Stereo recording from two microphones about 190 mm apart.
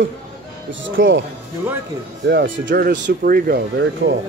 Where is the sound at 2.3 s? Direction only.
65° right (ahead or behind).